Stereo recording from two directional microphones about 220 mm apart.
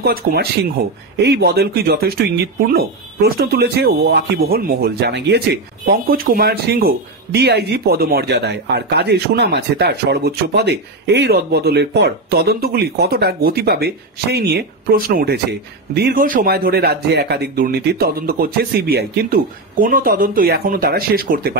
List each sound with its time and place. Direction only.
0.0 s speech: 45° right (ahead or behind)